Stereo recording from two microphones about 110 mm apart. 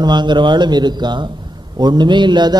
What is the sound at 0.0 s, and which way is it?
A man's voice, 45° right (ahead or behind).